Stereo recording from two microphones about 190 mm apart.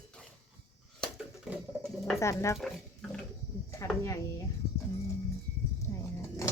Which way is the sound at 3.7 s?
15° left (ahead or behind).